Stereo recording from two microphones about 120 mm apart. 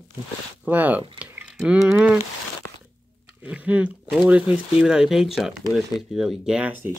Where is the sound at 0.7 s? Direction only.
15° right (ahead or behind).